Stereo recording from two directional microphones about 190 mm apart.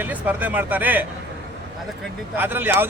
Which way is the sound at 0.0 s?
10° right (ahead or behind).